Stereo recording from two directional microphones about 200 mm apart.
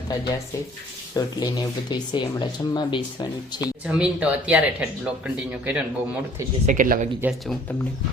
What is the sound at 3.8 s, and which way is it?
Speech, 5° right (ahead or behind).